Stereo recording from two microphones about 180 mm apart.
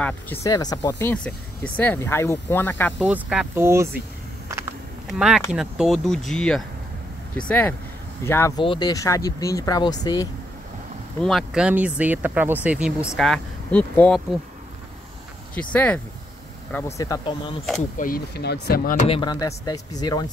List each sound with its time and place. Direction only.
0.0 s speech: 15° left (ahead or behind)
3.0 s speech: 5° right (ahead or behind)
5.0 s speech: 5° right (ahead or behind); by 8.5 s 15° left (ahead or behind)
8.5 s speech: 25° left (ahead or behind)
11.1 s speech: centre (ahead or behind)
15.5 s speech: 10° left (ahead or behind); by 17.6 s 30° left (ahead or behind)
17.9 s speech: 50° left (ahead or behind)
18.4 s speech: 60° left (ahead or behind)
19.0 s speech: 30° left (ahead or behind)
19.3 s speech: 20° left (ahead or behind)